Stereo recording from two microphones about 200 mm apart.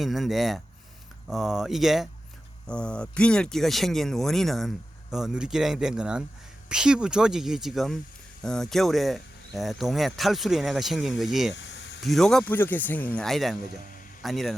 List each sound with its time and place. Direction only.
0.0 s speech: centre (ahead or behind)
11.5 s a sound: 65° left (ahead or behind)
12.0 s speech: centre (ahead or behind)